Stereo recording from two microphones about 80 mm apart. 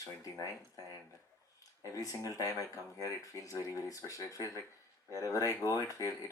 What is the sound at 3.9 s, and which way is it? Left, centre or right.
Speech, left.